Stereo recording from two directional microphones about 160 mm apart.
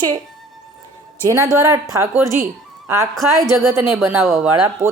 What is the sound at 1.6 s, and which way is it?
A woman's voice, 20° right (ahead or behind).